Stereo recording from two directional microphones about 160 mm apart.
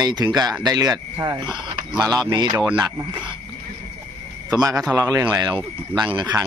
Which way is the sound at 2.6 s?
10° right (ahead or behind).